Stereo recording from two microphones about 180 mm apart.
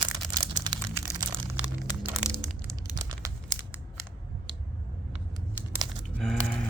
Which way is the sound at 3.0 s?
20° right (ahead or behind).